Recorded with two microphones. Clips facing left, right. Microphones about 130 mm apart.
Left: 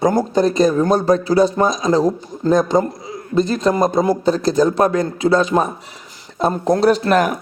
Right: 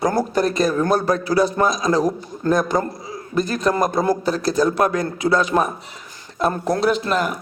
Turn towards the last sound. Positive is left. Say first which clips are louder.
# left 6 dB
turn(degrees=55)  # may be behind; listen again after turning